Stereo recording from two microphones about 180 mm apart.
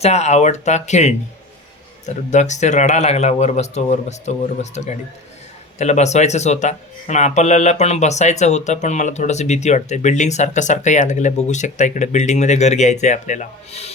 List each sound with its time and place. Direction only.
0.0 s speech: 40° left (ahead or behind)